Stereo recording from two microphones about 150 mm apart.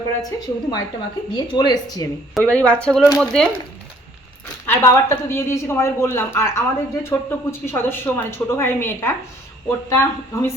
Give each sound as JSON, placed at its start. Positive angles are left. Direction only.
{"t": 0.3, "sound": "speech", "side_deg": 25}
{"t": 2.4, "sound": "a woman's voice", "side_deg": 10}
{"t": 4.6, "sound": "a woman's voice", "side_deg": 15}